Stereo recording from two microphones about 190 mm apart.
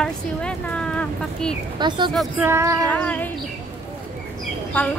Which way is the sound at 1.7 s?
25° right (ahead or behind).